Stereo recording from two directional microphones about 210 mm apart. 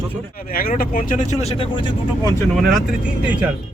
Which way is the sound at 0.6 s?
45° left (ahead or behind).